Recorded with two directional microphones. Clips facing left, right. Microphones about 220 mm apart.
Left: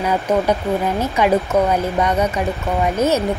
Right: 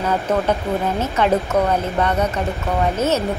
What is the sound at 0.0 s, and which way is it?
Speech, 10° left (ahead or behind).